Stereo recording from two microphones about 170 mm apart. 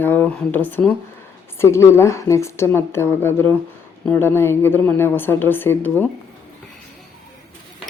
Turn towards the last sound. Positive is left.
turn(degrees=10)  # may be behind; listen again after turning